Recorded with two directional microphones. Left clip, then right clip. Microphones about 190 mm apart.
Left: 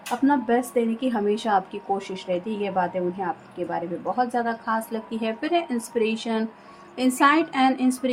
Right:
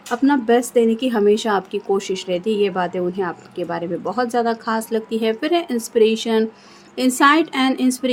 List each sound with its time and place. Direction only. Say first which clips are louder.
0.3 s a woman's voice: right 6 dB; 45° right (ahead or behind)